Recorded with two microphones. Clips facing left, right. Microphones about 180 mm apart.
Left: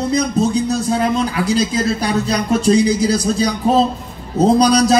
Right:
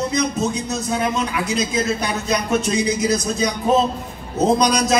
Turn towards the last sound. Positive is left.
turn(degrees=30)  # may be behind; listen again after turning